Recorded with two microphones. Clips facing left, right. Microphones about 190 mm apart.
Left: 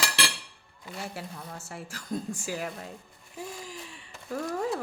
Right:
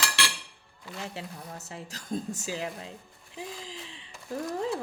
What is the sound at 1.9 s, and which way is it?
Speech, 25° right (ahead or behind).